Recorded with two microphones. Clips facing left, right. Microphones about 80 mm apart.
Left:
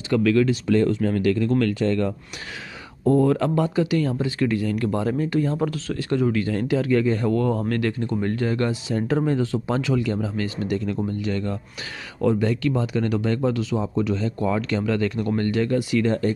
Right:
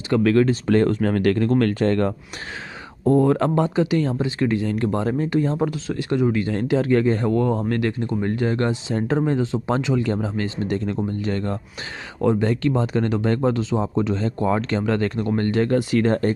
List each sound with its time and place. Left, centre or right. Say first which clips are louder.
0.2 s speech: right 2 dB; right
1.5 s speech: right 2 dB; right
3.1 s speech: right 1 dB; right